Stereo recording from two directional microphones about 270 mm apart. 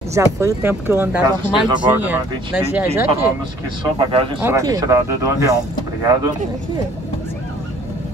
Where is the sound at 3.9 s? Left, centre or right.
Centre.